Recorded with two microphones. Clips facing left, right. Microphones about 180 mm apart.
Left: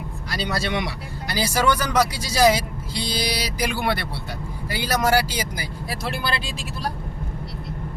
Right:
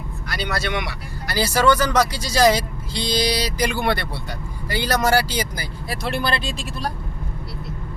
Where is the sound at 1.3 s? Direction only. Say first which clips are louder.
Right 3 dB; 15° left (ahead or behind).